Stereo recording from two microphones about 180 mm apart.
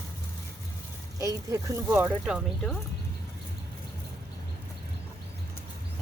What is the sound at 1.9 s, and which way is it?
Speech, 5° right (ahead or behind).